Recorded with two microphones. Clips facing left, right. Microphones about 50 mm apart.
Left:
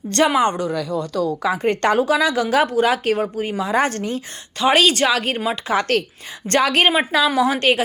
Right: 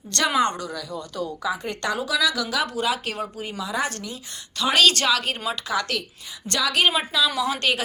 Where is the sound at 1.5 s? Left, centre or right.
Left.